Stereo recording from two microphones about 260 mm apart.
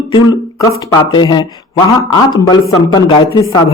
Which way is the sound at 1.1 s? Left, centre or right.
Centre.